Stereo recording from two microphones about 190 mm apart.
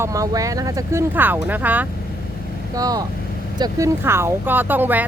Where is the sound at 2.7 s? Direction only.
20° right (ahead or behind).